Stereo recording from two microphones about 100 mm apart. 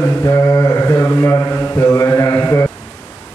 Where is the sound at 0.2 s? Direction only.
30° left (ahead or behind).